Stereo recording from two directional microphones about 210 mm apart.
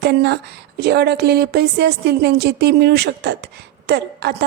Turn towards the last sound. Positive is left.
turn(degrees=-50)  # may be behind; listen again after turning